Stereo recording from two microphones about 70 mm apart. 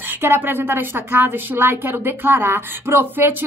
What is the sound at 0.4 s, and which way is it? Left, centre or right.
Speech, right.